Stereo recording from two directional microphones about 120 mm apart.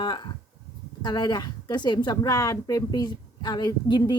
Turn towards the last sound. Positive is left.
turn(degrees=40)  # may be behind; listen again after turning